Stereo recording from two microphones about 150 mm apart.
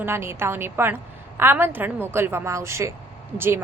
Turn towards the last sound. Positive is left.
turn(degrees=-15)  # may be behind; listen again after turning